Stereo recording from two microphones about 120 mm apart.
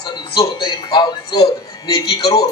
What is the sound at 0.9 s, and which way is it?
Speech, 35° left (ahead or behind).